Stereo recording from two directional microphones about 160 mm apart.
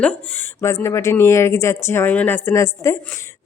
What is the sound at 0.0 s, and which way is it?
Speech, 10° left (ahead or behind).